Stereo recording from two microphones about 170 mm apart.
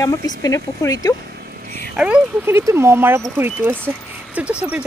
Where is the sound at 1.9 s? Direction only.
5° right (ahead or behind).